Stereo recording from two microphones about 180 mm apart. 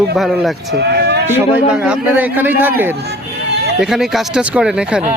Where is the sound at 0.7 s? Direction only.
65° right (ahead or behind).